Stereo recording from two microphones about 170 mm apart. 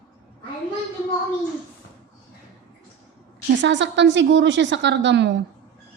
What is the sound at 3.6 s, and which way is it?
A woman's voice, 90° right.